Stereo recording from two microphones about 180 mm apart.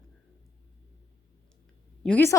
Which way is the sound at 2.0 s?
10° left (ahead or behind).